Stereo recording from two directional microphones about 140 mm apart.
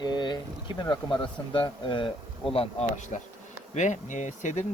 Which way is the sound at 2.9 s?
60° left (ahead or behind).